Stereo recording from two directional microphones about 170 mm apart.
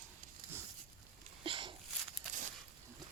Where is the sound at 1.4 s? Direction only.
30° right (ahead or behind).